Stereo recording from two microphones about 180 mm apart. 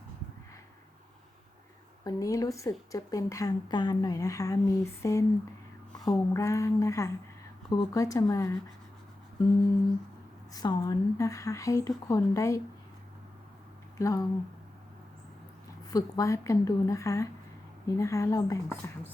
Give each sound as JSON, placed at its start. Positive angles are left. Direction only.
{"t": 2.0, "sound": "a woman's voice", "side_deg": 20}
{"t": 10.5, "sound": "a woman's voice", "side_deg": 20}
{"t": 14.0, "sound": "a woman's voice", "side_deg": 20}
{"t": 15.9, "sound": "a woman's voice", "side_deg": 20}